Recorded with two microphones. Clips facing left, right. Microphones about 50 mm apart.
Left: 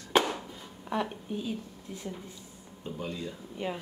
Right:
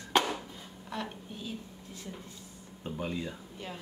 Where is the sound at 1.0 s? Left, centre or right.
Centre.